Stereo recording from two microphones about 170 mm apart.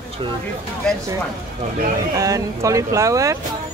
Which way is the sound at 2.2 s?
20° right (ahead or behind).